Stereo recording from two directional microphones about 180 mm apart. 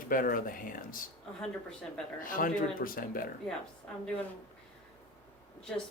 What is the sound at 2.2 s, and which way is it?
Speech, 50° left (ahead or behind).